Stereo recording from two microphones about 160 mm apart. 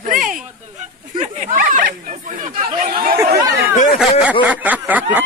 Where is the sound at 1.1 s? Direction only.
45° right (ahead or behind); by 3.2 s 65° right (ahead or behind).